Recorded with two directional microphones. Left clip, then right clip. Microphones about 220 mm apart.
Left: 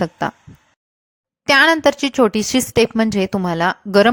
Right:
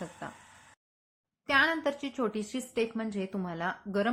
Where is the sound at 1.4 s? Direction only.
45° left (ahead or behind).